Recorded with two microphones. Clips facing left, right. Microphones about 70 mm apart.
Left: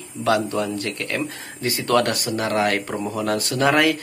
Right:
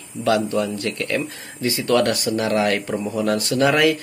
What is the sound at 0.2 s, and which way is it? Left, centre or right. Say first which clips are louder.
Speech: right 1 dB; left.